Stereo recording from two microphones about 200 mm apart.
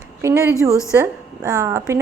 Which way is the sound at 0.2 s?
15° right (ahead or behind).